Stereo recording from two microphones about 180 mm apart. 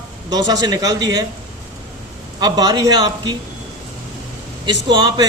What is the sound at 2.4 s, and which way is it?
Speech, 20° right (ahead or behind).